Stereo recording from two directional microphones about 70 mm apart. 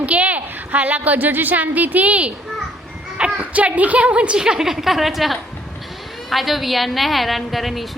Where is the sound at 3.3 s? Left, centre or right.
Right; by 7.9 s centre.